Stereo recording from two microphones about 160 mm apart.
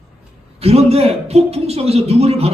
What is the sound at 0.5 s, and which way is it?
A man's voice, 40° right (ahead or behind).